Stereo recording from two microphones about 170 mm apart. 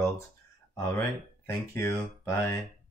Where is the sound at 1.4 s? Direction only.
15° left (ahead or behind).